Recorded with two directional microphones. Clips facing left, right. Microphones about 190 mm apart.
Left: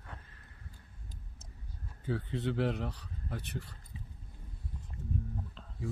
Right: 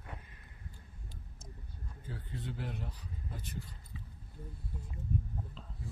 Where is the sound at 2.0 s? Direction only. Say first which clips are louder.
Left 10 dB; 80° left.